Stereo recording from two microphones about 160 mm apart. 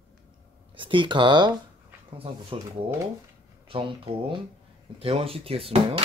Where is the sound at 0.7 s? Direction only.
30° right (ahead or behind).